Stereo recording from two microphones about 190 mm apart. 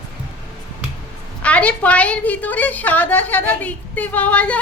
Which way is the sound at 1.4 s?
5° left (ahead or behind).